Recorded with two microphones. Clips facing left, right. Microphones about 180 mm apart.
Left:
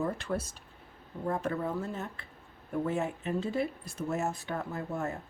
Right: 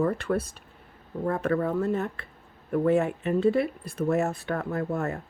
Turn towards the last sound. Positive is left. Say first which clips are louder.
# right 6 dB
turn(degrees=-65)  # may be behind; listen again after turning